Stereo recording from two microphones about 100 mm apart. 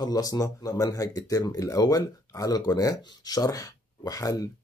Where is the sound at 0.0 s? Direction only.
40° left (ahead or behind).